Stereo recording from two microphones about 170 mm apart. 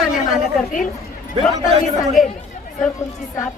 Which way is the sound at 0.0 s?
Centre (ahead or behind).